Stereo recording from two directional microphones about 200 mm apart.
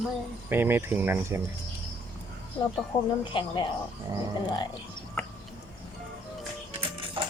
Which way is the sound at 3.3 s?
25° left (ahead or behind).